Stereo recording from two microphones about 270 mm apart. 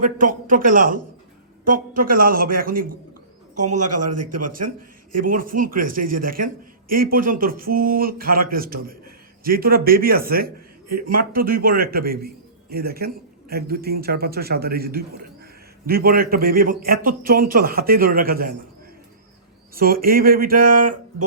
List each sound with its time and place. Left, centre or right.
0.4 s a man's voice: right
3.8 s a man's voice: right
5.3 s a man's voice: right
6.0 s speech: right
6.9 s a man's voice: right
19.7 s a man's voice: right